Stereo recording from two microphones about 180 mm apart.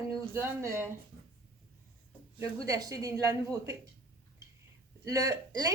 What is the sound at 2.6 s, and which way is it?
Speech, 20° right (ahead or behind).